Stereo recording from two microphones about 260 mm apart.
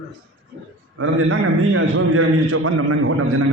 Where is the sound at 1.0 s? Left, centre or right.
Right.